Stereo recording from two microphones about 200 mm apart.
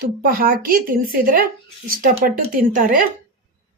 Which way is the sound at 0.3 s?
45° right (ahead or behind).